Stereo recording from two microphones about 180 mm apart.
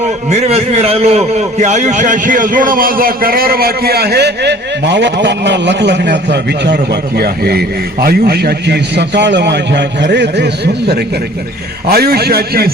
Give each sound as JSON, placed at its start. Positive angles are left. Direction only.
{"t": 0.0, "sound": "a man's voice", "side_deg": -40}
{"t": 7.2, "sound": "a man's voice", "side_deg": -60}